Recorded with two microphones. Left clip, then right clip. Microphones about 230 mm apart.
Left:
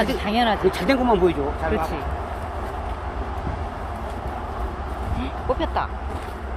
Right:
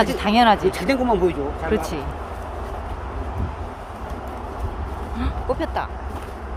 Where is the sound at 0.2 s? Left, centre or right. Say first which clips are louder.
Right 4 dB; right.